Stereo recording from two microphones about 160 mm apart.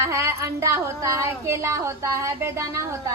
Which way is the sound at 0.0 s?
20° right (ahead or behind).